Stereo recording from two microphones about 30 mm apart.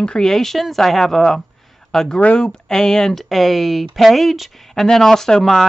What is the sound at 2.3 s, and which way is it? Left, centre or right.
Speech, left.